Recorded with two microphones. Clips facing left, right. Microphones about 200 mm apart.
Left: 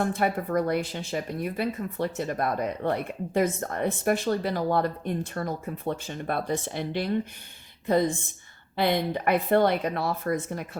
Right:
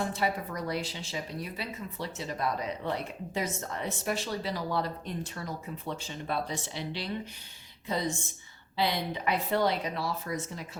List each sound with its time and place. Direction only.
0.0 s a woman's voice: 55° left (ahead or behind)